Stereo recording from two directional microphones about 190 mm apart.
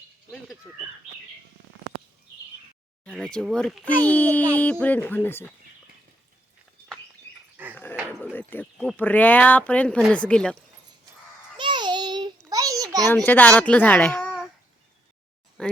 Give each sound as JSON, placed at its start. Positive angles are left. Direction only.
{"t": 0.3, "sound": "a child's voice", "side_deg": 0}
{"t": 3.0, "sound": "a child's voice", "side_deg": 5}
{"t": 7.6, "sound": "dog", "side_deg": -10}
{"t": 8.2, "sound": "speech", "side_deg": 10}
{"t": 11.5, "sound": "child singing", "side_deg": -25}
{"t": 12.5, "sound": "a sound", "side_deg": -20}
{"t": 13.1, "sound": "speech", "side_deg": 10}
{"t": 15.6, "sound": "speech", "side_deg": 5}